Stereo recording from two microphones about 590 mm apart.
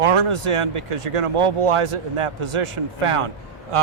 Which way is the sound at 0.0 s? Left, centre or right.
Right.